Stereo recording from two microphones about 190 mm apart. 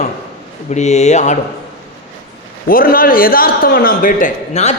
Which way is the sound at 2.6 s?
50° left (ahead or behind).